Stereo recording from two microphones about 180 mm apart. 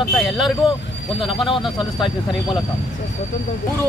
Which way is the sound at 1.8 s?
25° left (ahead or behind).